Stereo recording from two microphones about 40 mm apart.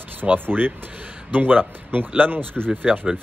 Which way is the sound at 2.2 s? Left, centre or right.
Left.